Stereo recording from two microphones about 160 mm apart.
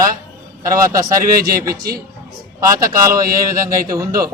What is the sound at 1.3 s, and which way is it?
Speech, 65° right (ahead or behind).